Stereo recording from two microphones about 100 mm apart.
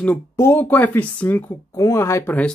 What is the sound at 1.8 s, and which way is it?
Speech, 30° left (ahead or behind).